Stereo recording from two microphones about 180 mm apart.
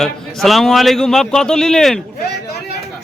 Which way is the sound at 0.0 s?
Centre (ahead or behind).